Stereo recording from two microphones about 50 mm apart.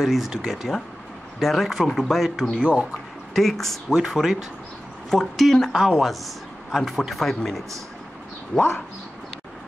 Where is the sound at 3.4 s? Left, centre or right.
Centre.